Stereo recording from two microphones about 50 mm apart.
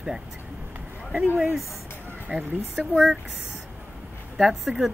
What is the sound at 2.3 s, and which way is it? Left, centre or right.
Speech, centre.